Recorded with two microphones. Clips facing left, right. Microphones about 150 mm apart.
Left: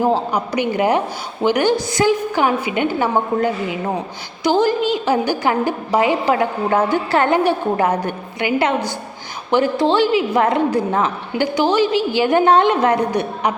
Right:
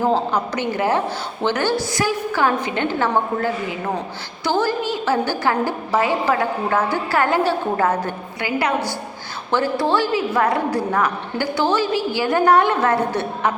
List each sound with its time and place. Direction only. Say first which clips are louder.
0.0 s a woman's voice: left 1 dB; 15° left (ahead or behind)